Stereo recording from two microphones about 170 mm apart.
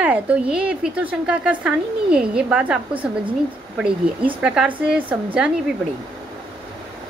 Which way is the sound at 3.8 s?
5° right (ahead or behind).